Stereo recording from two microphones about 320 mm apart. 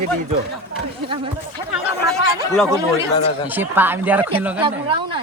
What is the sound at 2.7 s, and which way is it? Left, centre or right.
Speech, centre.